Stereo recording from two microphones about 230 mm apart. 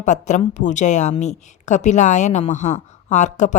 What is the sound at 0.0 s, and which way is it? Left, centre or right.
A woman's voice, left.